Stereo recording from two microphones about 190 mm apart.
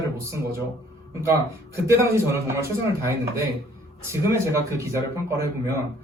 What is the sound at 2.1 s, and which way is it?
Speech, 15° right (ahead or behind).